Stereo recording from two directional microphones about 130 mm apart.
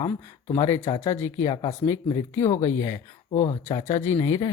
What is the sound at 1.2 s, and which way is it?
Speech, 25° left (ahead or behind).